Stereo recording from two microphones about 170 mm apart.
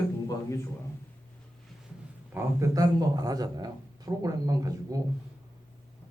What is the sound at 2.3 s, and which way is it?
A man's voice, 20° right (ahead or behind).